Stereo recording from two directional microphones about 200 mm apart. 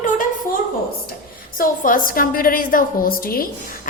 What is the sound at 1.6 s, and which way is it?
A woman's voice, 45° left (ahead or behind).